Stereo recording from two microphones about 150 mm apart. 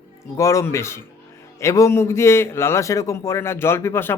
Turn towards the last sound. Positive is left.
turn(degrees=15)  # may be behind; listen again after turning